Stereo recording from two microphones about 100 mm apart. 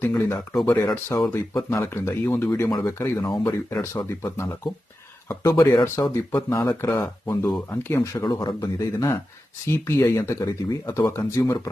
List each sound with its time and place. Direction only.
0.1 s speech: 25° left (ahead or behind)
8.3 s speech: 45° left (ahead or behind)
8.9 s speech: 30° left (ahead or behind)